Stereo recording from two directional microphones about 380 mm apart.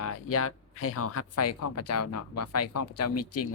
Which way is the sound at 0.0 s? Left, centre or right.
Left.